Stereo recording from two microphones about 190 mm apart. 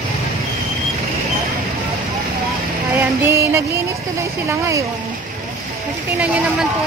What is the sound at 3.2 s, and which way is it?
Speech, 15° right (ahead or behind).